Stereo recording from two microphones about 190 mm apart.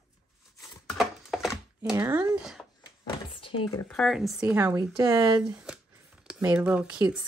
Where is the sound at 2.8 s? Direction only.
30° left (ahead or behind).